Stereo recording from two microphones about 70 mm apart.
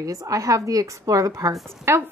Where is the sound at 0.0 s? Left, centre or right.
Right.